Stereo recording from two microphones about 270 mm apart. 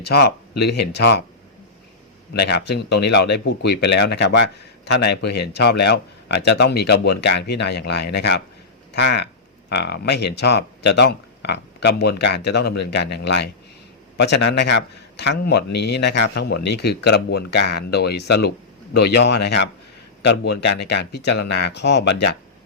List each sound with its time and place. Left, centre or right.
0.0 s a man's voice: left
2.3 s a man's voice: left